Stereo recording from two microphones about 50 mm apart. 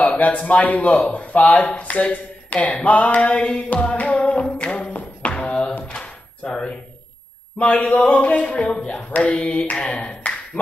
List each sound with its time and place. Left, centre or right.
0.0 s speech: left
3.8 s music: left
4.5 s music: centre
4.8 s music: left
5.3 s thunk: left
5.9 s a sound: left
6.4 s a man's voice: centre
9.1 s speech: left